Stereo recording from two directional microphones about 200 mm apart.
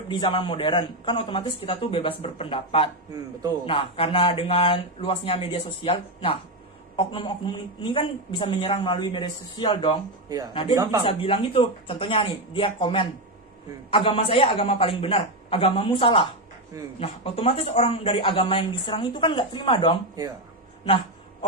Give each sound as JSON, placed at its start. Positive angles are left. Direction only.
{"t": 0.1, "sound": "a woman's voice", "side_deg": 25}
{"t": 3.1, "sound": "a man's voice", "side_deg": -20}
{"t": 3.7, "sound": "a woman's voice", "side_deg": 25}
{"t": 10.2, "sound": "speech", "side_deg": -20}
{"t": 10.5, "sound": "a woman's voice", "side_deg": 25}